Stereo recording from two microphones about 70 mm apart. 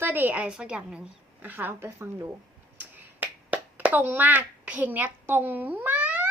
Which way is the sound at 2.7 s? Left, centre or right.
Right.